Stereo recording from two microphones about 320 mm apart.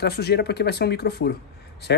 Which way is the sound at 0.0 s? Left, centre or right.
Left.